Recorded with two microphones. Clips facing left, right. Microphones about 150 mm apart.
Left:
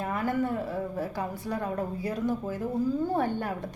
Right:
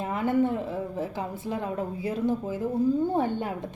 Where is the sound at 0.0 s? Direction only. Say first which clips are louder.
Right 4 dB; 20° right (ahead or behind).